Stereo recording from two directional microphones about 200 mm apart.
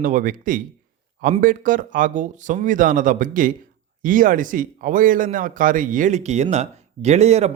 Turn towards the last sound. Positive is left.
turn(degrees=-35)  # may be behind; listen again after turning